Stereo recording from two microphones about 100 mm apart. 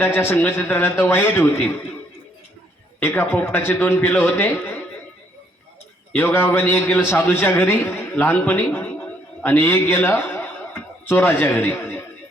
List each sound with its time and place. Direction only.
0.0 s a man's voice: 20° left (ahead or behind)
3.0 s a man's voice: 20° left (ahead or behind)
6.1 s a man's voice: 20° left (ahead or behind)